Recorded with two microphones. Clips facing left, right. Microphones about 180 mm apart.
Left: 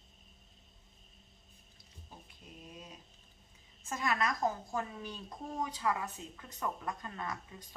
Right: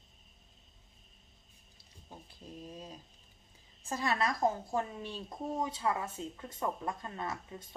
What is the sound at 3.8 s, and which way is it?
A woman's voice, 35° right (ahead or behind).